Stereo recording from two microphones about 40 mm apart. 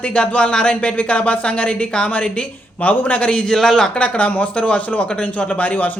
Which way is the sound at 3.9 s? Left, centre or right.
Left.